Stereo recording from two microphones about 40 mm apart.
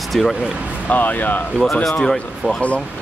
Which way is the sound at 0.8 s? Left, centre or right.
Left.